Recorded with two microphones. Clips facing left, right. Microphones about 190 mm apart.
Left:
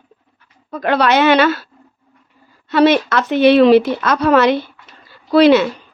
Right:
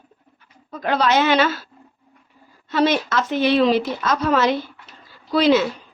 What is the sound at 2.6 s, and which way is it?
Speech, 70° left (ahead or behind).